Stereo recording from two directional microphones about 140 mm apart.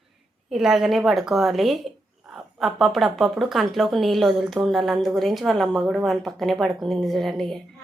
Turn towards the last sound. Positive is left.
turn(degrees=0)  # may be behind; listen again after turning